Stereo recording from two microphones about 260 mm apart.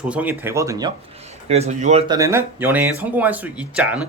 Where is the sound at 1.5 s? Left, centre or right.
Right.